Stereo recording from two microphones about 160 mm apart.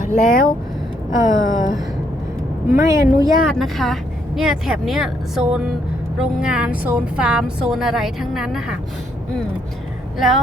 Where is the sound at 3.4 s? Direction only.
Centre (ahead or behind).